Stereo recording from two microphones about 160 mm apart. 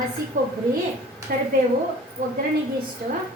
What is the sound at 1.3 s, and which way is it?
Speech, 65° right (ahead or behind).